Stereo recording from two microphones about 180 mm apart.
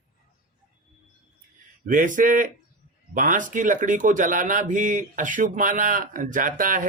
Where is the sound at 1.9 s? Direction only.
45° right (ahead or behind).